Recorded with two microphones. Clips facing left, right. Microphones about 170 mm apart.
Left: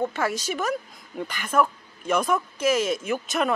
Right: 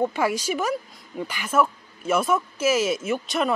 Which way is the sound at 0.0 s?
10° right (ahead or behind).